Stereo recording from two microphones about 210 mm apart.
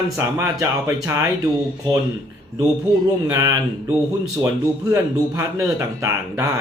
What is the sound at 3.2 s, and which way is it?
A man's voice, 15° right (ahead or behind).